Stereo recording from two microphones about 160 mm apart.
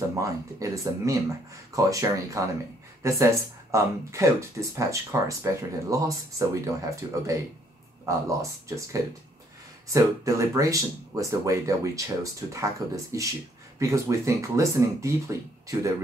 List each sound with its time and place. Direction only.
0.2 s speech: 20° right (ahead or behind)